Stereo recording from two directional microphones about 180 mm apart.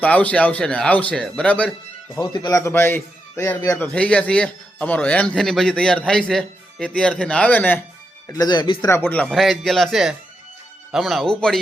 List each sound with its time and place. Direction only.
0.0 s speech: 10° left (ahead or behind)
2.1 s speech: 25° left (ahead or behind)
8.3 s speech: 20° left (ahead or behind)
8.9 s speech: 10° left (ahead or behind)